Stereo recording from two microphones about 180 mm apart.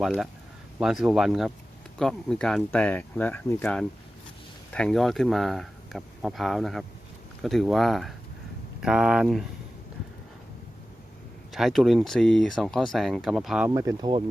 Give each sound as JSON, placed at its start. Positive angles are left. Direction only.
{"t": 0.0, "sound": "speech", "side_deg": 0}
{"t": 11.5, "sound": "speech", "side_deg": 0}
{"t": 13.7, "sound": "speech", "side_deg": -20}